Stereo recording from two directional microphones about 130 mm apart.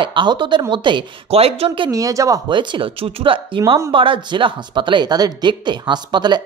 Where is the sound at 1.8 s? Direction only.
25° right (ahead or behind).